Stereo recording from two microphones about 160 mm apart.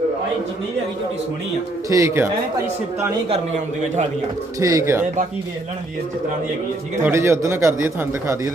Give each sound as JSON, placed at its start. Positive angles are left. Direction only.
{"t": 1.9, "sound": "a man's voice", "side_deg": -20}
{"t": 4.6, "sound": "speech", "side_deg": -20}
{"t": 7.0, "sound": "a man's voice", "side_deg": -15}